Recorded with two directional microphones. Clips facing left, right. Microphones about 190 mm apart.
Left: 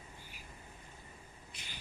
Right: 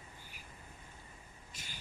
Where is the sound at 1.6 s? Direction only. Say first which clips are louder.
Right 2 dB; 45° right (ahead or behind).